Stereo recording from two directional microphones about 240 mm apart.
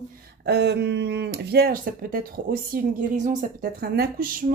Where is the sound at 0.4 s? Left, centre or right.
Right.